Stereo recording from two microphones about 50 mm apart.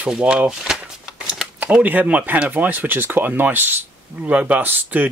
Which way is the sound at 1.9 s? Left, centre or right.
Right.